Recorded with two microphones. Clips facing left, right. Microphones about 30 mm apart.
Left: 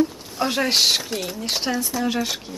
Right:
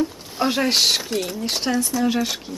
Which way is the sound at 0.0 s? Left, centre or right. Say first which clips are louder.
Even; centre.